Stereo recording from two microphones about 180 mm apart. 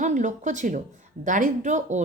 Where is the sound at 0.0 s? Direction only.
45° right (ahead or behind).